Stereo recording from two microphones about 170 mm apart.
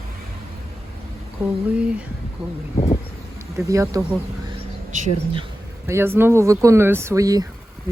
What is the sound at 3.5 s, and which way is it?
Speech, 20° right (ahead or behind).